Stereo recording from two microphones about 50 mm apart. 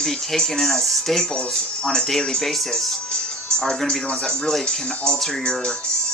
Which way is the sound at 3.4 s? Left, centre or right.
Centre.